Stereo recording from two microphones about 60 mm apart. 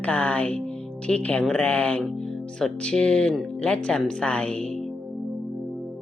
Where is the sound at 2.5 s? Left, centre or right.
Centre.